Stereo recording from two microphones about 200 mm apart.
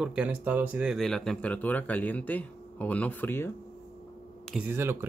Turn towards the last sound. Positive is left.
turn(degrees=-10)  # may be behind; listen again after turning